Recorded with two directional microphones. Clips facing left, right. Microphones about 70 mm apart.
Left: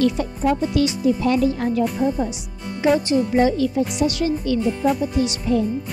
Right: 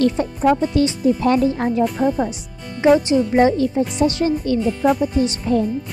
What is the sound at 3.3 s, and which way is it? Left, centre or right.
Speech, right.